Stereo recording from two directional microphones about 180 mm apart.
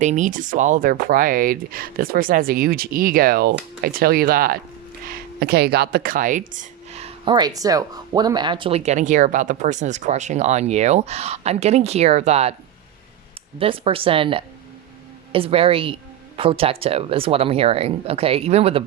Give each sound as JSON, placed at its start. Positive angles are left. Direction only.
{"t": 0.0, "sound": "speech", "side_deg": -40}
{"t": 7.3, "sound": "speech", "side_deg": -25}
{"t": 13.6, "sound": "speech", "side_deg": -30}